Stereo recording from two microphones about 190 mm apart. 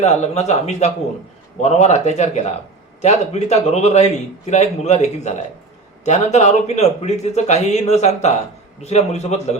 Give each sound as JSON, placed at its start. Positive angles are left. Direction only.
{"t": 0.0, "sound": "a man's voice", "side_deg": 35}